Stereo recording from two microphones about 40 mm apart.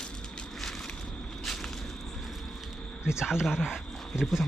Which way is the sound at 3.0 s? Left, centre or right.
Centre.